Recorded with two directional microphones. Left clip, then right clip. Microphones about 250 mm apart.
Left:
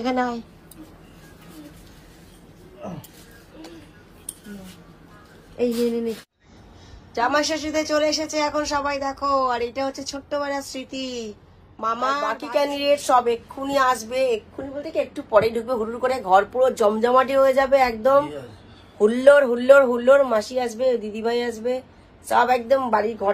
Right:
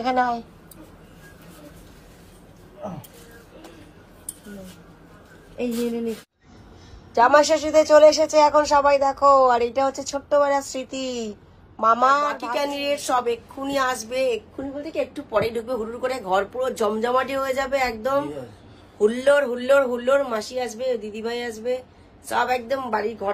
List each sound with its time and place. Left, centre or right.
0.0 s a woman's voice: centre
7.2 s a woman's voice: centre